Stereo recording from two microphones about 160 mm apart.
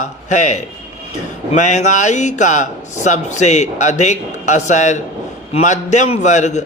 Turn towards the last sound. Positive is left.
turn(degrees=45)  # may be behind; listen again after turning